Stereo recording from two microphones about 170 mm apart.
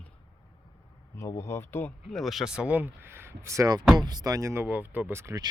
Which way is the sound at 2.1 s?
Centre (ahead or behind).